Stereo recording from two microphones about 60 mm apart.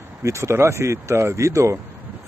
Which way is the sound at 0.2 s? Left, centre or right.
Right.